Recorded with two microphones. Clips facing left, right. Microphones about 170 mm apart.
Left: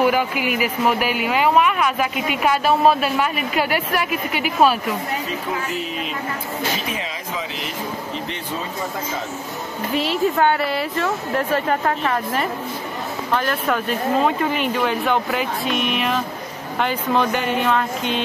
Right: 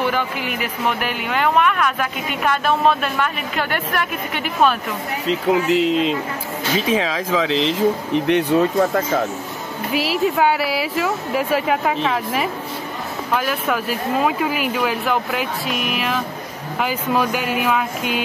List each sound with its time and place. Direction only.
0.0 s speech: 10° left (ahead or behind)
5.2 s speech: 80° right; by 9.2 s 65° right (ahead or behind)
9.9 s speech: 5° right (ahead or behind)
13.3 s speech: 5° right (ahead or behind)